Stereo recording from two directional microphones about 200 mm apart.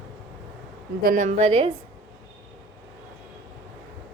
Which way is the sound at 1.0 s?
40° right (ahead or behind).